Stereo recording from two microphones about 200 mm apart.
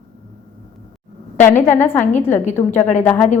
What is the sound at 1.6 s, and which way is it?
Speech, 10° left (ahead or behind).